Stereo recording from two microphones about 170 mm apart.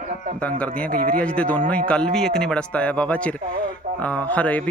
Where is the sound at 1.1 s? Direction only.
5° left (ahead or behind).